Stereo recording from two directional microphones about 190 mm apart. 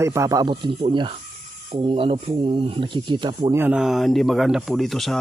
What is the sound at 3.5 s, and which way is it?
Speech, 5° right (ahead or behind).